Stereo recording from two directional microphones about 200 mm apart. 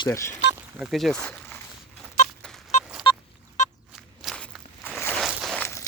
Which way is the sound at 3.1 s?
25° left (ahead or behind).